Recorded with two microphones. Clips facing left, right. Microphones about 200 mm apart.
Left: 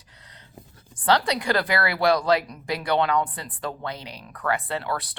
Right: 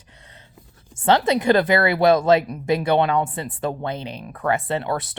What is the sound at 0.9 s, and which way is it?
A woman's voice, 25° right (ahead or behind).